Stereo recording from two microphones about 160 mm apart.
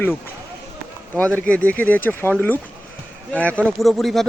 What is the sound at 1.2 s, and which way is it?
Speech, 10° left (ahead or behind).